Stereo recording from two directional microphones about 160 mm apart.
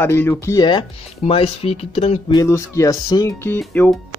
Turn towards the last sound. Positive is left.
turn(degrees=10)  # may be behind; listen again after turning